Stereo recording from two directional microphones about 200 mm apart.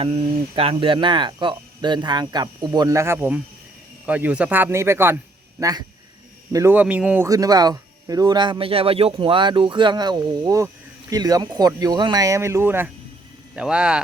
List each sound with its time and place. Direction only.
0.0 s speech: 25° right (ahead or behind); by 14.0 s 5° right (ahead or behind)